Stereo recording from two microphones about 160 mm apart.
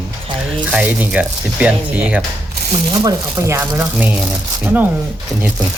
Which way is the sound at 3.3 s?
15° right (ahead or behind).